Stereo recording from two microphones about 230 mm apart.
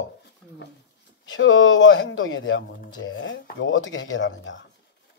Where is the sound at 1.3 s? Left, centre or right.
Left.